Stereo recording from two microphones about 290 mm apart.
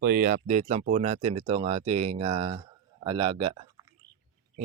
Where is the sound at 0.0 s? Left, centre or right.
Right.